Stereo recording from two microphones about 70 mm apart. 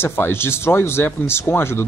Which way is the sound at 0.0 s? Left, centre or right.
Left.